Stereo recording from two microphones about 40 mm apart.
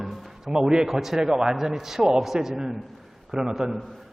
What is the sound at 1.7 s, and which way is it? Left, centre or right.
A man's voice, centre.